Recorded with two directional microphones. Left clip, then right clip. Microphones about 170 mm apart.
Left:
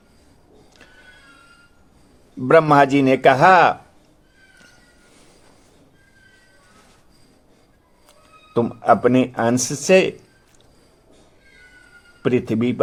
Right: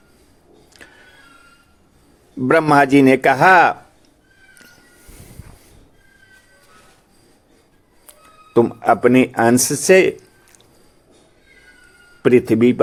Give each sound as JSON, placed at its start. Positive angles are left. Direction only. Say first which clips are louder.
{"t": 0.7, "sound": "vehicle", "louder": "right 7 dB", "side_deg": -30}
{"t": 2.5, "sound": "speech", "louder": "even", "side_deg": -30}
{"t": 8.5, "sound": "speech", "louder": "right 2 dB", "side_deg": -30}
{"t": 12.2, "sound": "speech", "louder": "right 7 dB", "side_deg": -30}